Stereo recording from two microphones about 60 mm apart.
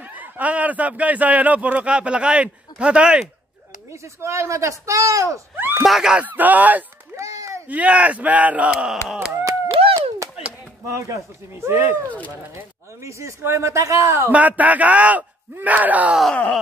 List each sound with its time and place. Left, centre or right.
0.0 s a man's voice: right
3.9 s speech: right
5.6 s a sound: right
5.9 s speech: centre
6.1 s speech: right
7.2 s a sound: right
7.6 s speech: right
9.4 s a sound: right
10.9 s speech: right
11.5 s speech: right
13.0 s speech: right
14.3 s speech: right